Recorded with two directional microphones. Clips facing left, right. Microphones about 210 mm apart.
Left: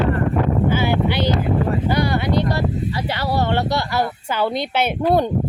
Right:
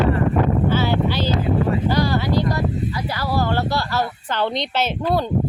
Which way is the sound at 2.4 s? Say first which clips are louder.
Left 1 dB; 30° left (ahead or behind).